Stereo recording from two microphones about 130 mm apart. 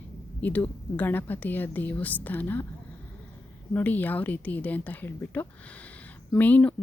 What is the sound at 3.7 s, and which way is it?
Speech, 15° left (ahead or behind).